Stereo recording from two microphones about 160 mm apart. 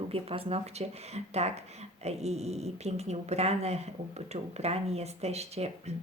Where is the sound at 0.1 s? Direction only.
35° right (ahead or behind).